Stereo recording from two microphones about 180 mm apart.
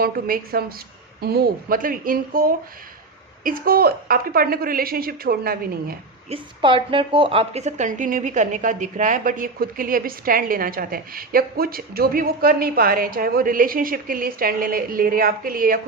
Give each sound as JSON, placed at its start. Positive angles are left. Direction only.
{"t": 0.0, "sound": "a woman's voice", "side_deg": -55}
{"t": 6.3, "sound": "a woman's voice", "side_deg": -30}